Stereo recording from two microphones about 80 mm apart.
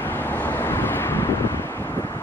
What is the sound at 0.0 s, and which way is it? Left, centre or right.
Vehicle, left.